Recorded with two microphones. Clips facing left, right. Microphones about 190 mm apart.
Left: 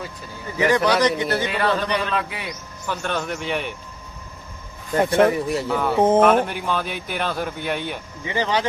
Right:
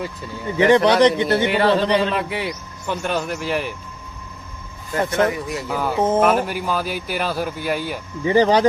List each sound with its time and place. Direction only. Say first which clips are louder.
0.5 s a man's voice: right 4 dB; 25° right (ahead or behind); by 3.8 s centre (ahead or behind)
4.9 s speech: left 3 dB; 30° left (ahead or behind)
5.6 s a man's voice: left 1 dB; centre (ahead or behind)
8.2 s speech: right 8 dB; 40° right (ahead or behind)